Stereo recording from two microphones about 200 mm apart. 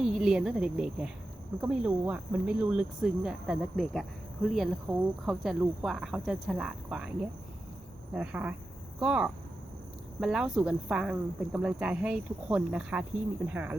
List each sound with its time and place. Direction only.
0.0 s speech: centre (ahead or behind)
8.1 s speech: 5° right (ahead or behind)